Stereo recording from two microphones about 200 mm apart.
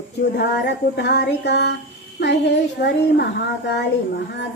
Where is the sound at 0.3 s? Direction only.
55° left (ahead or behind).